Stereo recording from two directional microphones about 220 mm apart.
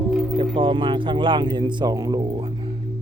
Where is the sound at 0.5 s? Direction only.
25° right (ahead or behind).